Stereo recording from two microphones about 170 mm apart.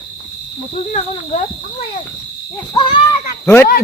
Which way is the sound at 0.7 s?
40° left (ahead or behind).